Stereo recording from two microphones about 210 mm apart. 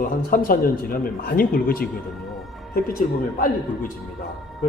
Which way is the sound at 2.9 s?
40° left (ahead or behind).